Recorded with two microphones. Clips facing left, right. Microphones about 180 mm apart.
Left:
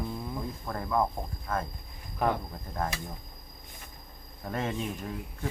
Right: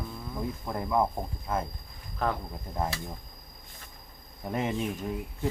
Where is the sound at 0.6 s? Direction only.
15° right (ahead or behind).